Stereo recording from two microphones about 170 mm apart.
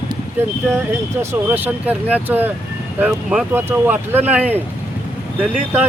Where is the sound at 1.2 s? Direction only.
10° right (ahead or behind).